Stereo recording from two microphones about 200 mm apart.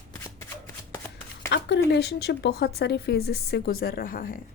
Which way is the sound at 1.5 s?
55° left (ahead or behind).